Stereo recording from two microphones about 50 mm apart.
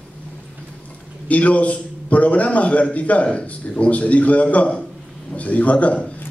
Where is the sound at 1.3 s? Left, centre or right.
Left.